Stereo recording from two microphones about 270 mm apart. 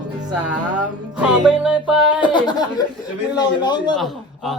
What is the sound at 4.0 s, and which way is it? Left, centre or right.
Speech, centre.